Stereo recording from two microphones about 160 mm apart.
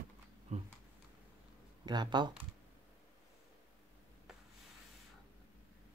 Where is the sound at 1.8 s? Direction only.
25° right (ahead or behind).